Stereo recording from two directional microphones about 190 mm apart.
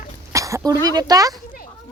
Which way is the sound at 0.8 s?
20° right (ahead or behind).